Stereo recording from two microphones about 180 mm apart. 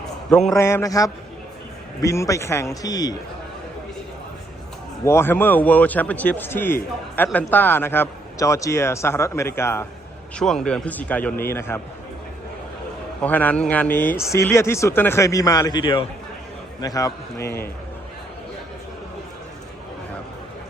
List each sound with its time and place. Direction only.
0.3 s a man's voice: 5° left (ahead or behind)
0.5 s a man's voice: 15° left (ahead or behind)
5.0 s a man's voice: 15° left (ahead or behind)
10.3 s a man's voice: centre (ahead or behind)
13.2 s a man's voice: 10° left (ahead or behind)